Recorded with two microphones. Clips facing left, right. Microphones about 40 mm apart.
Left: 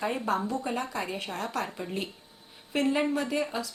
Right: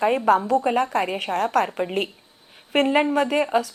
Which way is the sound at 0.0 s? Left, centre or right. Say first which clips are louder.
Right 10 dB; right.